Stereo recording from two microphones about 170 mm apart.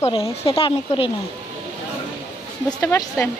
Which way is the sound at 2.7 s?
5° left (ahead or behind).